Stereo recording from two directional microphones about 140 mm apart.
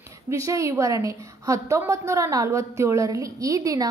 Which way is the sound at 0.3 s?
20° right (ahead or behind).